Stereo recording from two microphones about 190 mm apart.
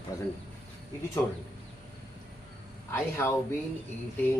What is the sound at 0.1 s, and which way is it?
Speech, 15° left (ahead or behind).